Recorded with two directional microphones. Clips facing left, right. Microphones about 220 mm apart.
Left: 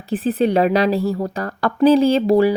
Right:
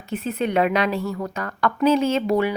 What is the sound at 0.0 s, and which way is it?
A woman's voice, 35° left (ahead or behind).